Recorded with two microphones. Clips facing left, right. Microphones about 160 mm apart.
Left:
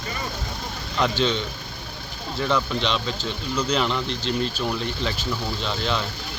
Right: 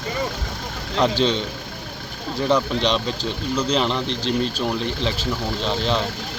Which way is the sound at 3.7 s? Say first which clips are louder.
Right 2 dB; 30° right (ahead or behind).